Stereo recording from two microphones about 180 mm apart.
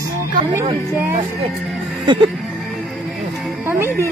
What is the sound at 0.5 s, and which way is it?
Speech, 10° right (ahead or behind).